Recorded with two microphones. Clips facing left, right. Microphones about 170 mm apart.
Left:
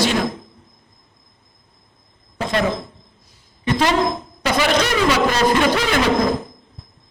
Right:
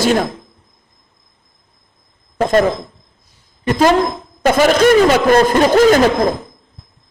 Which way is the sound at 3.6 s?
45° right (ahead or behind).